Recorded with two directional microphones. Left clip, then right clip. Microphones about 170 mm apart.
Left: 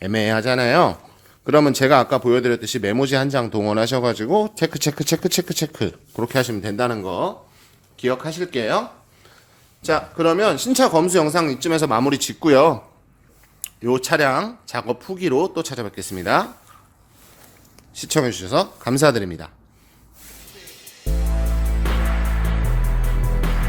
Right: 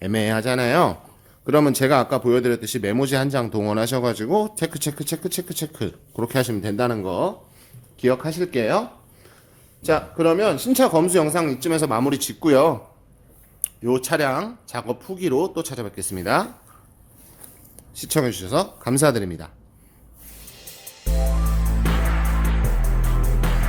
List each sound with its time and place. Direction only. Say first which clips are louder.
0.0 s speech: left 3 dB; 20° left (ahead or behind); by 5.9 s 35° left (ahead or behind)
6.1 s speech: left 2 dB; 15° left (ahead or behind)
7.9 s speech: right 1 dB; 15° right (ahead or behind)
9.8 s speech: even; 5° right (ahead or behind)
10.2 s speech: left 3 dB; 15° left (ahead or behind)
17.9 s speech: left 2 dB; 15° left (ahead or behind)
20.5 s music: right 2 dB; centre (ahead or behind)